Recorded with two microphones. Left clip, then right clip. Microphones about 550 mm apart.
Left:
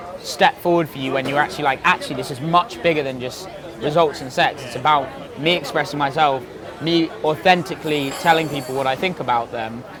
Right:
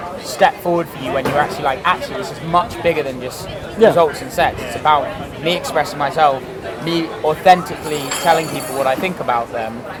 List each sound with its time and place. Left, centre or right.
0.3 s speech: left